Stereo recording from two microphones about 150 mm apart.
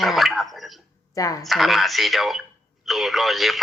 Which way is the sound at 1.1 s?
25° left (ahead or behind).